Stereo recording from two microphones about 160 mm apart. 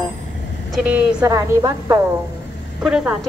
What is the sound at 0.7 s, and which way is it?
Vehicle, centre (ahead or behind).